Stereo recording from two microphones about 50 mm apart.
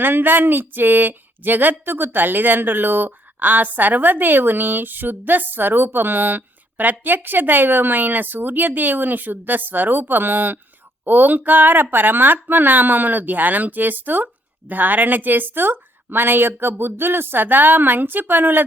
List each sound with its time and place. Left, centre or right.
0.0 s speech: right